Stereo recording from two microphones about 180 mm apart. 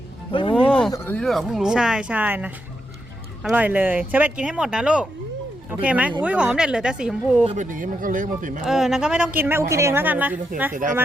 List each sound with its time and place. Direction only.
0.3 s speech: 30° left (ahead or behind)
0.9 s speech: 15° left (ahead or behind)
1.2 s a woman's voice: centre (ahead or behind)
7.4 s speech: 45° right (ahead or behind)
8.6 s a woman's voice: 5° right (ahead or behind)
10.8 s speech: 50° right (ahead or behind)